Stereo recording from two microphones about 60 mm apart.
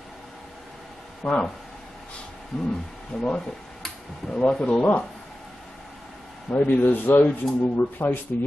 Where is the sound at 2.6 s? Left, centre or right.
Centre; by 5.1 s left.